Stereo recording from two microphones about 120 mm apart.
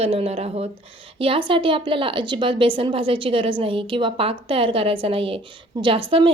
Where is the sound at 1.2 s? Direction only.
45° right (ahead or behind).